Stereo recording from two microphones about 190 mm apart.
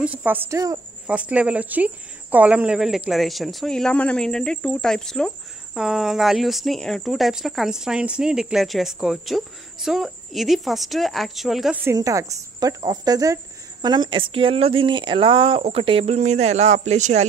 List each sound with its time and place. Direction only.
0.0 s speech: 10° right (ahead or behind); by 17.3 s 35° right (ahead or behind)